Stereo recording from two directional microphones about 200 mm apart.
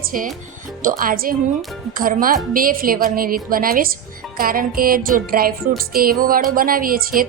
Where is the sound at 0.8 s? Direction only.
45° right (ahead or behind).